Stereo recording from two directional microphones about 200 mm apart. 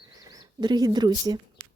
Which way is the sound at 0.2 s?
20° right (ahead or behind).